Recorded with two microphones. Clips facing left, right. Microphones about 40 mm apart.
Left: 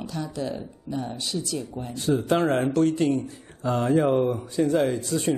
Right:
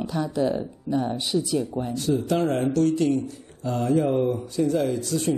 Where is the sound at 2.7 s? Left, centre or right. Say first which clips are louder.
Even; left.